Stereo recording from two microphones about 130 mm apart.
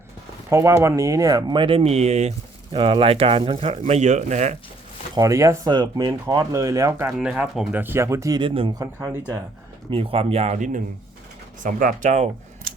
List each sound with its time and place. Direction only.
0.5 s speech: 20° right (ahead or behind); by 2.3 s 55° right (ahead or behind)
2.7 s speech: 40° right (ahead or behind); by 4.5 s 65° right (ahead or behind)
5.1 s speech: 25° right (ahead or behind)
5.7 s speech: 40° right (ahead or behind); by 7.1 s 20° right (ahead or behind)
7.2 s speech: 5° right (ahead or behind)
7.7 s speech: 15° right (ahead or behind)
8.4 s speech: 40° right (ahead or behind)
8.8 s speech: 20° right (ahead or behind)
9.9 s speech: 45° right (ahead or behind); by 12.7 s 70° right (ahead or behind)